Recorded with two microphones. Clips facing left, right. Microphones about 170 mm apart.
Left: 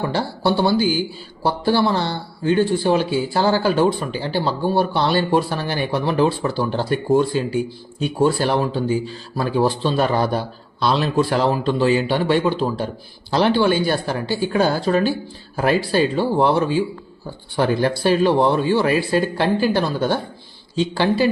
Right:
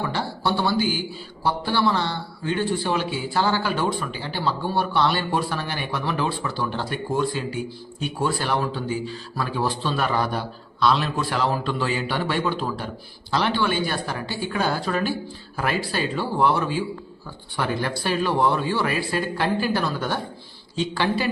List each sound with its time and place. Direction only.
0.0 s a man's voice: 35° left (ahead or behind)